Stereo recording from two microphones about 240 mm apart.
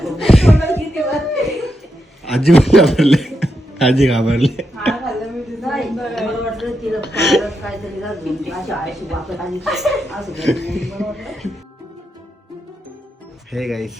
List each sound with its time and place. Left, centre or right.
0.0 s a sound: centre
7.2 s a woman's voice: centre
13.5 s speech: centre